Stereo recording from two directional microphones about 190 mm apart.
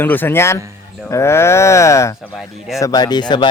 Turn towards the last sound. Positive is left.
turn(degrees=25)  # may be behind; listen again after turning